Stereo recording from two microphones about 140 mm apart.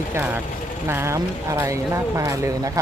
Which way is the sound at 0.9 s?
20° right (ahead or behind).